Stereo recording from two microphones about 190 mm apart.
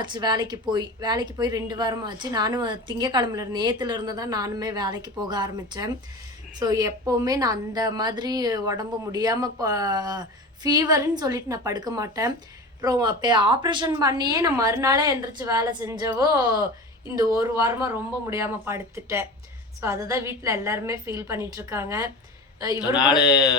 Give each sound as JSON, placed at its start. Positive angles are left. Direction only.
{"t": 0.0, "sound": "a woman's voice", "side_deg": -25}
{"t": 22.9, "sound": "speech", "side_deg": 20}
{"t": 23.2, "sound": "speech", "side_deg": -5}